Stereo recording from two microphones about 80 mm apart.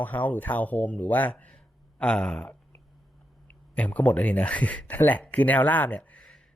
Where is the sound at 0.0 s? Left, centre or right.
Left.